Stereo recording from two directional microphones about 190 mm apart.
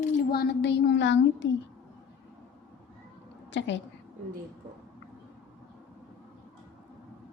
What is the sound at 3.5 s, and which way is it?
Speech, 70° left (ahead or behind).